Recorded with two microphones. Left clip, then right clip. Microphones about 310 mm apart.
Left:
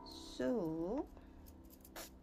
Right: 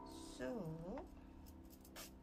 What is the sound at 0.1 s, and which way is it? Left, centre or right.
Music, centre.